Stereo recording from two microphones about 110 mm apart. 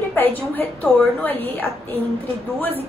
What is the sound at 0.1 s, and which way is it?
A woman's voice, 15° left (ahead or behind).